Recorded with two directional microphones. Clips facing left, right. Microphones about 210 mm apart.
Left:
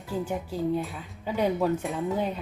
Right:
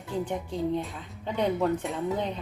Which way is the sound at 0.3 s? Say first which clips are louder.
Left 3 dB; 5° left (ahead or behind).